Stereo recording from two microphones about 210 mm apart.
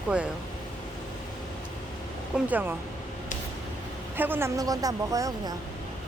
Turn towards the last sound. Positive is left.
turn(degrees=-15)  # may be behind; listen again after turning